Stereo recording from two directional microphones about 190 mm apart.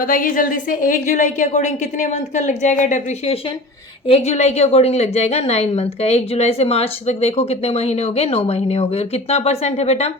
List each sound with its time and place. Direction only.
0.0 s a woman's voice: 45° left (ahead or behind)